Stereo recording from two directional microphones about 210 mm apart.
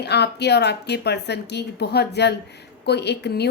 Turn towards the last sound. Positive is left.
turn(degrees=50)  # may be behind; listen again after turning